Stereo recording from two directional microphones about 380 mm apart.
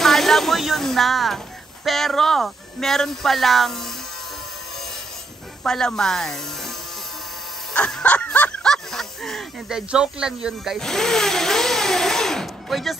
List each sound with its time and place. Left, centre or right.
0.0 s a sound: centre
1.9 s speech: centre
5.6 s speech: centre
7.7 s speech: centre